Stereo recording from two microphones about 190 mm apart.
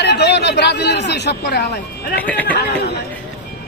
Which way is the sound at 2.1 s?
10° left (ahead or behind).